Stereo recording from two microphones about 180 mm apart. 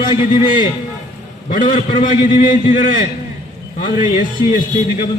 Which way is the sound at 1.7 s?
45° left (ahead or behind).